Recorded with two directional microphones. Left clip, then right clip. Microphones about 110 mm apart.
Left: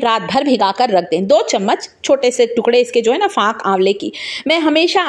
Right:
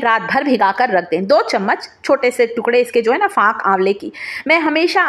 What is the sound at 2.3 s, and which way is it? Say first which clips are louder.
A woman's voice: left 2 dB; 40° left (ahead or behind).